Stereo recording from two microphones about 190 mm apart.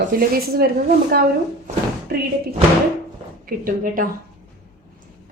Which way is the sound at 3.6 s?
45° right (ahead or behind).